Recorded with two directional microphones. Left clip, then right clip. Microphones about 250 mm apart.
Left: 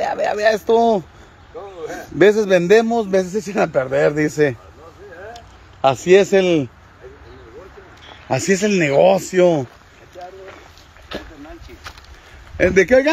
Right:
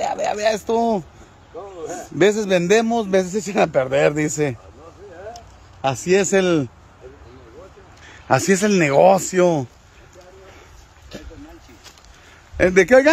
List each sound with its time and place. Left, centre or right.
0.0 s speech: centre
1.6 s speech: right
2.0 s a man's voice: centre
6.0 s a man's voice: centre
8.1 s speech: centre
12.5 s speech: centre